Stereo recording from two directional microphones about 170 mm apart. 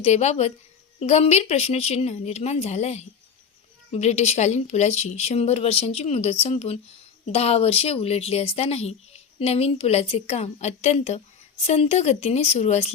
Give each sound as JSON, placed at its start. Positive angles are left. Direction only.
{"t": 0.0, "sound": "a woman's voice", "side_deg": 40}